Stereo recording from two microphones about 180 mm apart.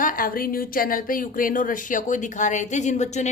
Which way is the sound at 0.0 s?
50° left (ahead or behind).